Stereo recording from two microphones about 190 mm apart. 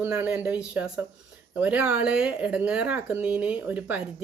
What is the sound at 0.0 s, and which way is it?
Speech, 5° right (ahead or behind).